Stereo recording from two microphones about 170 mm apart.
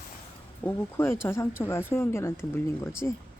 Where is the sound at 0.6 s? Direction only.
15° left (ahead or behind).